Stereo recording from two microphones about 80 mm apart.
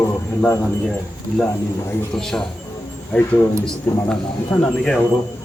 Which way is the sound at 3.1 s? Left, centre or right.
Left.